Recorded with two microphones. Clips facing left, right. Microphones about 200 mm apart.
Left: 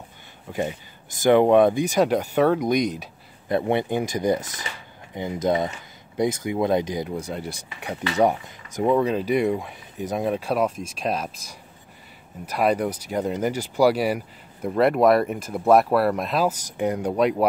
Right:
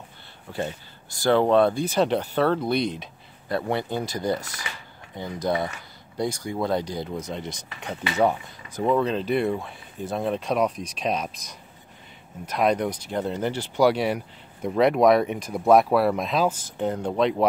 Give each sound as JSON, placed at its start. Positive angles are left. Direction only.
{"t": 0.5, "sound": "speech", "side_deg": 15}